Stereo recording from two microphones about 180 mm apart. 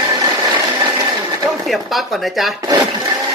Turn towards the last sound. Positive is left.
turn(degrees=-20)  # may be behind; listen again after turning